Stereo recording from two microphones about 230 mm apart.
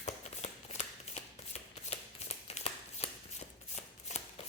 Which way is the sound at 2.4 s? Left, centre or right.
Left.